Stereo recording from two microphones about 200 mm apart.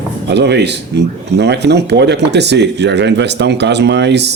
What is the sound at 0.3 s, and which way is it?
Speech, 60° right (ahead or behind).